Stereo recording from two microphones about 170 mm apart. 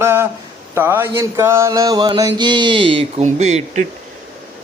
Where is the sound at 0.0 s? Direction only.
15° right (ahead or behind).